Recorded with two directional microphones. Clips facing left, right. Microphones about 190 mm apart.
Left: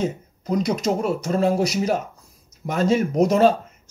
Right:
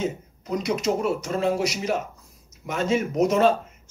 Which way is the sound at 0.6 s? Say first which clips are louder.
Left 2 dB; 35° left (ahead or behind).